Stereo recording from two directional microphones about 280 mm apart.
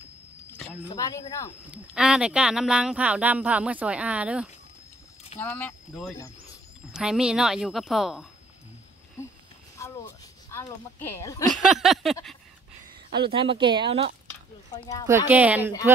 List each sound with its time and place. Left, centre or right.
0.6 s speech: centre
1.7 s speech: centre
5.4 s speech: centre
9.8 s speech: centre
11.5 s speech: centre
13.1 s speech: centre
14.7 s speech: centre
15.0 s speech: centre